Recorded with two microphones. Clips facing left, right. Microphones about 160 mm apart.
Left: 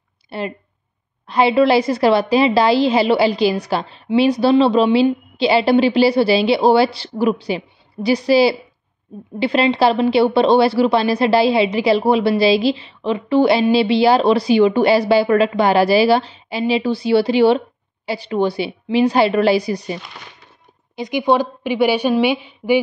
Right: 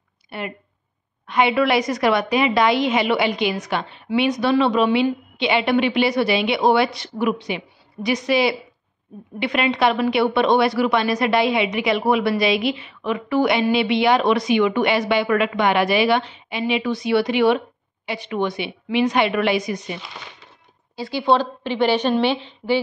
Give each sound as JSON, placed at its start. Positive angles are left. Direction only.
{"t": 0.3, "sound": "a woman's voice", "side_deg": 30}
{"t": 20.9, "sound": "a woman's voice", "side_deg": 20}